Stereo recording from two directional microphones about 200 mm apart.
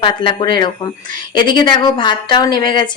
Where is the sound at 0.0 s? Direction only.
25° left (ahead or behind).